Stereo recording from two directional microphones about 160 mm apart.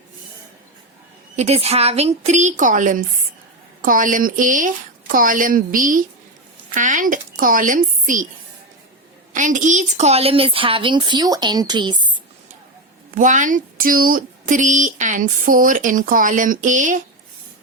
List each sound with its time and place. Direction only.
1.4 s speech: 40° right (ahead or behind)
9.3 s a woman's voice: 50° right (ahead or behind); by 12.1 s 30° right (ahead or behind)
13.1 s speech: 50° right (ahead or behind)